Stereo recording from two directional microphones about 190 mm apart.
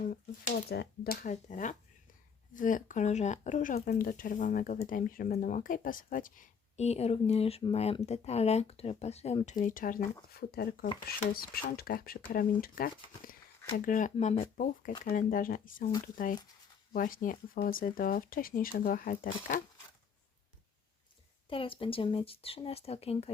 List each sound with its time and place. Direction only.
0.0 s speech: 45° left (ahead or behind)
9.6 s speech: 45° left (ahead or behind)
21.5 s speech: 30° left (ahead or behind)